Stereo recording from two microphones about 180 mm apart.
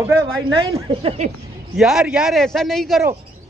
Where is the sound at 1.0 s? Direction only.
35° right (ahead or behind).